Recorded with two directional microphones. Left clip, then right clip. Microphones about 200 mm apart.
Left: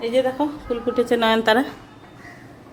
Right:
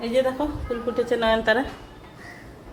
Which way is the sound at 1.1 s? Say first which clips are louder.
Left 3 dB; 60° left (ahead or behind).